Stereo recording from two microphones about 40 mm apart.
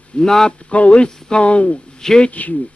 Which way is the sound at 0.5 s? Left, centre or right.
Left.